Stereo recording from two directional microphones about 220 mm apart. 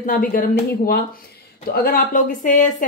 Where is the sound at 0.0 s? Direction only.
40° left (ahead or behind).